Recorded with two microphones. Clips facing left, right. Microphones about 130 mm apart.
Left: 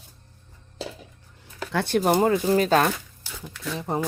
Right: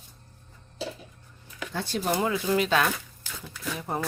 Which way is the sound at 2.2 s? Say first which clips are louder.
Left 5 dB; 40° left (ahead or behind).